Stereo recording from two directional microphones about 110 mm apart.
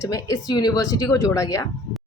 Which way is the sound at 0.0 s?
30° left (ahead or behind).